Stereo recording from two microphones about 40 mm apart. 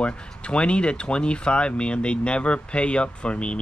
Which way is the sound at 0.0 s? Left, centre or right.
Left.